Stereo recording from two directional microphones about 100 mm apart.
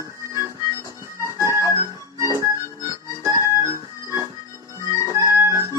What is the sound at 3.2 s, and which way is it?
Organ, 30° right (ahead or behind).